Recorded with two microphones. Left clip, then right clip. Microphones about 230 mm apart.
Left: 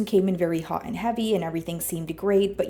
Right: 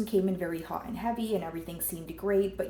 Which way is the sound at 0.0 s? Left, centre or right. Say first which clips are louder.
Left 7 dB; left.